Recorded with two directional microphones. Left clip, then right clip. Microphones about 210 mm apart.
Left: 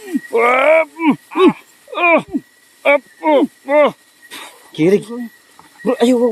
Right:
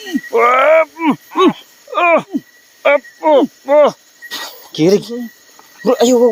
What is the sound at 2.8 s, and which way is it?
Cricket, 5° right (ahead or behind).